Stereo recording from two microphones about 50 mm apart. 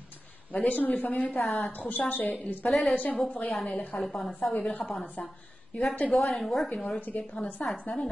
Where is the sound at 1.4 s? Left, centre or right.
Centre.